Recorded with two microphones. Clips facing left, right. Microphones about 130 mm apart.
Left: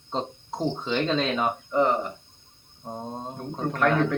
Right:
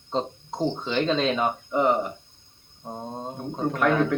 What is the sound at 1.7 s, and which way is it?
Speech, 15° right (ahead or behind).